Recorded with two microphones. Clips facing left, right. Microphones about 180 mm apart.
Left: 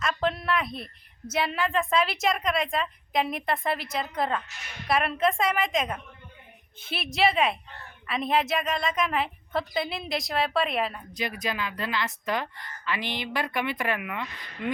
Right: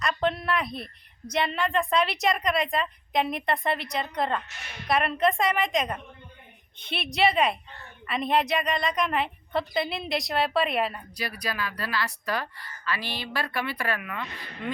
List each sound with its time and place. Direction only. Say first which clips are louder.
0.0 s a sound: right 1 dB; centre (ahead or behind)
1.3 s a woman's voice: right 1 dB; 5° left (ahead or behind)
11.1 s speech: left 2 dB; 20° left (ahead or behind)